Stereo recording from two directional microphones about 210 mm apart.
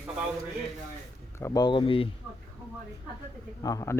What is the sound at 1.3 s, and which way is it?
Speech, 15° left (ahead or behind).